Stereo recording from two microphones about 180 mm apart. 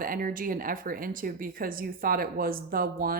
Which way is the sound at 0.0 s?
50° right (ahead or behind).